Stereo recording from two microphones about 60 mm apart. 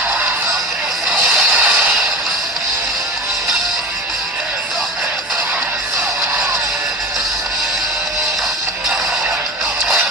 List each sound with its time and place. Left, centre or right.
1.1 s music: centre
1.5 s music: centre